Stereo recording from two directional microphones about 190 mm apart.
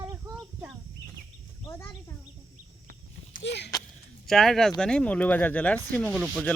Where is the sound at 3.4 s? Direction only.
60° left (ahead or behind).